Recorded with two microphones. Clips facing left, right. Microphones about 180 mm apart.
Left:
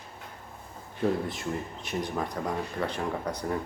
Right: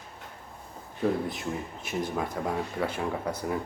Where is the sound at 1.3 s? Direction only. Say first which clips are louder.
Even; centre (ahead or behind).